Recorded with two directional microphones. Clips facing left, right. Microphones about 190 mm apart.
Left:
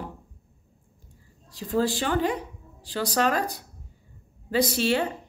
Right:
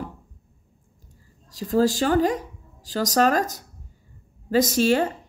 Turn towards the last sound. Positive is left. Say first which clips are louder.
# right 4 dB
turn(degrees=-45)  # may be behind; listen again after turning